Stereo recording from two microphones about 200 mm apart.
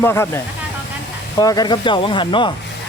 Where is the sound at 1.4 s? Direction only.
20° left (ahead or behind).